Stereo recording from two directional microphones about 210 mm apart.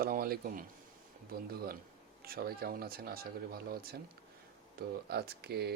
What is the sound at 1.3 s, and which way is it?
Speech, 45° right (ahead or behind).